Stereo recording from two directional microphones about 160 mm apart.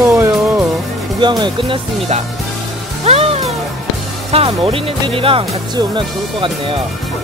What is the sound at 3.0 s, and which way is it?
Music, 40° right (ahead or behind).